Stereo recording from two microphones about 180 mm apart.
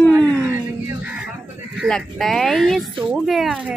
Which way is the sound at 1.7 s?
Centre (ahead or behind).